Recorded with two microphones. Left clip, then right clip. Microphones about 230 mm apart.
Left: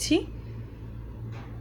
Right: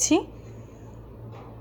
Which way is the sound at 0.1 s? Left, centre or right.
Centre.